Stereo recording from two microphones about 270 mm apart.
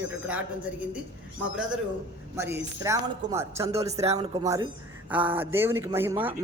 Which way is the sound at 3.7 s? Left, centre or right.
Right.